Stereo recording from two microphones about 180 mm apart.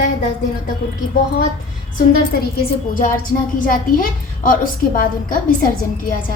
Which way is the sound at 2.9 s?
50° left (ahead or behind).